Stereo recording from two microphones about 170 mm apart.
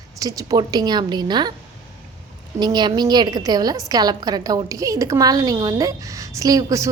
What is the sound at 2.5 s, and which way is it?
A woman's voice, 25° right (ahead or behind).